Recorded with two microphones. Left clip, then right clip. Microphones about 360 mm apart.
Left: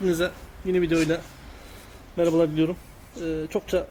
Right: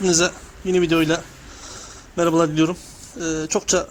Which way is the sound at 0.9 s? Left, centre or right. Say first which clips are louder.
Right 4 dB; centre.